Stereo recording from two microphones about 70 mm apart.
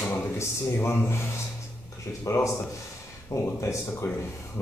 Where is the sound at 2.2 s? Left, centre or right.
Left.